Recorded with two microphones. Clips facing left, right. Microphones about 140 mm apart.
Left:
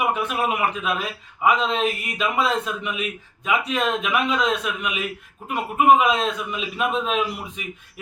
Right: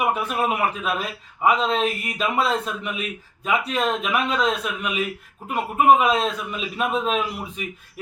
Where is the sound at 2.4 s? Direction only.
35° right (ahead or behind).